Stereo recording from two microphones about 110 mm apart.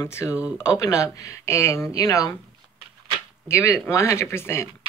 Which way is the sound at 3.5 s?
25° left (ahead or behind).